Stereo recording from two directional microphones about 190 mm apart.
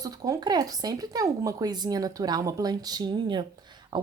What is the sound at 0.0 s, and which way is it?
Speech, 20° right (ahead or behind).